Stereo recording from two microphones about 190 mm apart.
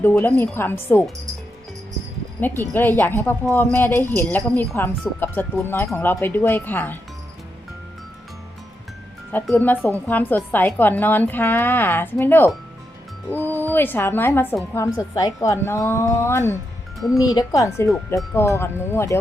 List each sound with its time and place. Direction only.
0.0 s speech: 10° left (ahead or behind)
2.4 s speech: 10° left (ahead or behind)
9.3 s speech: 10° left (ahead or behind)
13.5 s speech: 10° left (ahead or behind)